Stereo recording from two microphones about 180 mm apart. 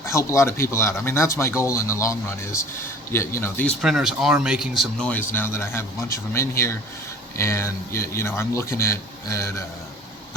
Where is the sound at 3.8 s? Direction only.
Centre (ahead or behind).